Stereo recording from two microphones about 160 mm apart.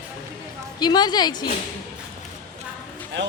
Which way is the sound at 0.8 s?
25° left (ahead or behind).